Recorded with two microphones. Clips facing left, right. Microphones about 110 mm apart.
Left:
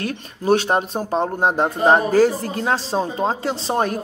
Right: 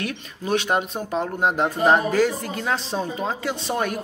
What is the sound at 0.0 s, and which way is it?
Speech, 35° left (ahead or behind).